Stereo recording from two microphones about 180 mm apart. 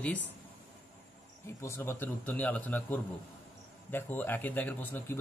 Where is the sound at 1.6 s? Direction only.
15° left (ahead or behind).